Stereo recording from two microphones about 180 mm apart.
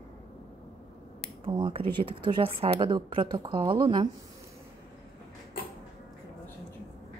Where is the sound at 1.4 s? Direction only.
30° right (ahead or behind).